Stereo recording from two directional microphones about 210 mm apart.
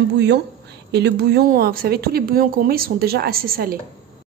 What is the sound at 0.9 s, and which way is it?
A woman's voice, 50° right (ahead or behind).